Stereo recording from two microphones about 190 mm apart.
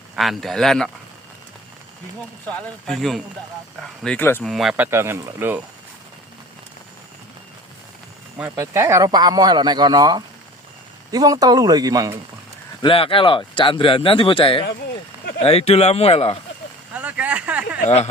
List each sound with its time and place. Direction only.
0.2 s speech: centre (ahead or behind)
2.5 s speech: centre (ahead or behind)
4.5 s speech: centre (ahead or behind)
8.4 s speech: 10° right (ahead or behind)
12.8 s speech: 30° left (ahead or behind)
16.9 s a sound: 10° right (ahead or behind)
17.8 s speech: 35° left (ahead or behind)